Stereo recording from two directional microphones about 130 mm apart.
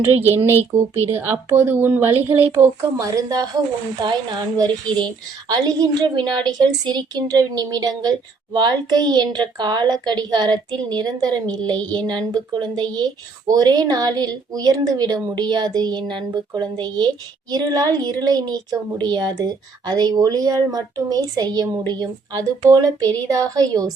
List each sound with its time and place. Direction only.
0.7 s a woman's voice: 20° right (ahead or behind)